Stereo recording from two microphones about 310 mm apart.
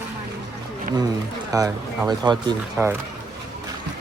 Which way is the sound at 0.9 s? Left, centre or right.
Centre.